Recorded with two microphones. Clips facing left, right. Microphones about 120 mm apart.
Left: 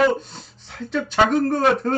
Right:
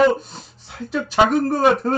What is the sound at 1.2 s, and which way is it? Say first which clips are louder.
Speech: right 2 dB; 10° right (ahead or behind).